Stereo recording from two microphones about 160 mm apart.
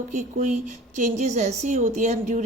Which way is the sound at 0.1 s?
50° right (ahead or behind).